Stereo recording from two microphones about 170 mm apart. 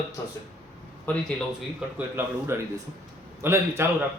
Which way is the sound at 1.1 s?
10° left (ahead or behind).